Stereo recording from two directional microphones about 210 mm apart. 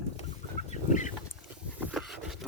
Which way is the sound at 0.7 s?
35° left (ahead or behind).